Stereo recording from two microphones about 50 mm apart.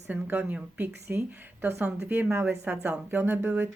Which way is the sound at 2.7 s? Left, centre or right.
Right.